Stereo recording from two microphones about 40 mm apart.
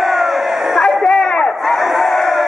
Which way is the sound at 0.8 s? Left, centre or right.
Centre.